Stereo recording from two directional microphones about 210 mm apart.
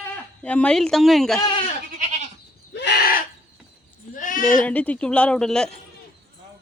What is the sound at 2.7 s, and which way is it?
Bird, 50° left (ahead or behind).